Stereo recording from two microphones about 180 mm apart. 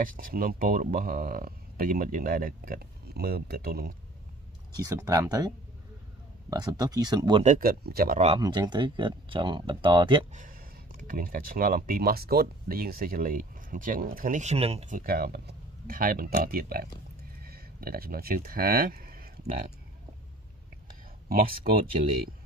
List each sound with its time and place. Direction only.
0.0 s speech: 50° right (ahead or behind)
4.8 s speech: 20° right (ahead or behind)
6.5 s speech: 20° right (ahead or behind)
7.4 s speech: 45° right (ahead or behind)
7.8 s speech: 60° right (ahead or behind)
8.4 s speech: 25° right (ahead or behind)
10.3 s speech: 50° right (ahead or behind)
15.0 s speech: 55° right (ahead or behind)
17.4 s a sound: 55° right (ahead or behind)
21.3 s speech: 55° right (ahead or behind)